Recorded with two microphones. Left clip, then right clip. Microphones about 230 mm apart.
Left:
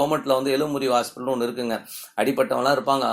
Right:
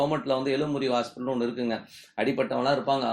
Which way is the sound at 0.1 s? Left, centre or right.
Left.